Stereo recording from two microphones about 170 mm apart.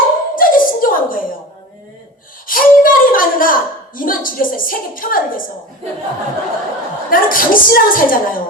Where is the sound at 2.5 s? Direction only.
55° left (ahead or behind).